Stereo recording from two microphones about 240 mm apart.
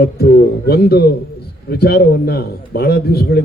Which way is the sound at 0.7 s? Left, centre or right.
Left.